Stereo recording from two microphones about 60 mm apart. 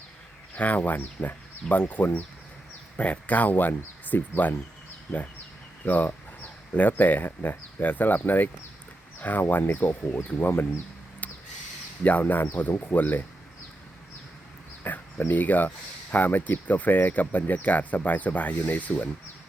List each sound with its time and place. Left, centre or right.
0.5 s speech: left
5.8 s speech: left
12.0 s speech: left
14.8 s speech: left